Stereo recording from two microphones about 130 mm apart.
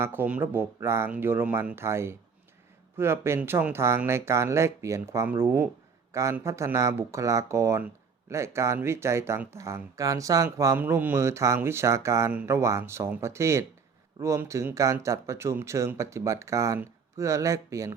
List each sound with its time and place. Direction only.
0.0 s a man's voice: 15° right (ahead or behind)